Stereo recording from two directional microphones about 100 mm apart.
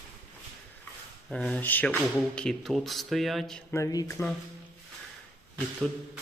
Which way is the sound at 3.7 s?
35° left (ahead or behind).